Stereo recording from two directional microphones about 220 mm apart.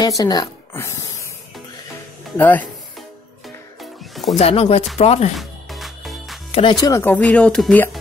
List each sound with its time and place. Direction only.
0.0 s speech: 15° left (ahead or behind)
2.3 s speech: 10° left (ahead or behind)
4.1 s music: centre (ahead or behind)
4.4 s speech: 30° left (ahead or behind)
5.4 s music: centre (ahead or behind)
6.5 s speech: 20° left (ahead or behind); by 8.0 s 5° left (ahead or behind)